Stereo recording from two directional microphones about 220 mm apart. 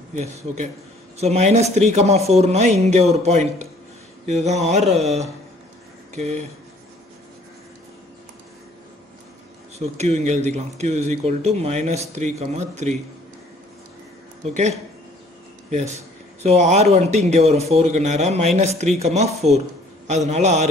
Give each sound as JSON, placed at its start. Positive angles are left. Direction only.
{"t": 0.1, "sound": "speech", "side_deg": -30}
{"t": 9.8, "sound": "speech", "side_deg": -30}
{"t": 14.4, "sound": "speech", "side_deg": -30}
{"t": 15.7, "sound": "speech", "side_deg": -30}